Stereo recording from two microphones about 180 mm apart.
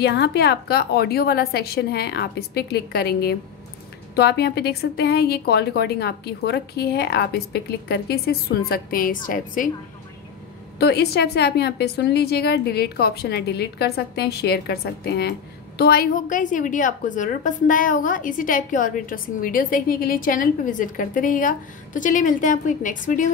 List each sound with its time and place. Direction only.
0.0 s a woman's voice: 65° left (ahead or behind); by 9.7 s 50° left (ahead or behind)
10.8 s a woman's voice: 65° left (ahead or behind); by 23.2 s 45° left (ahead or behind)